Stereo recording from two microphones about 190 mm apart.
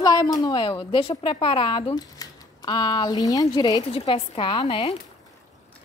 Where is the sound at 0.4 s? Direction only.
25° left (ahead or behind).